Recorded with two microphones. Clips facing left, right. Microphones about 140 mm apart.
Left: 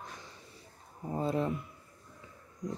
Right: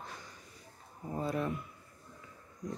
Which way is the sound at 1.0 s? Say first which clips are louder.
Left 3 dB; 25° left (ahead or behind).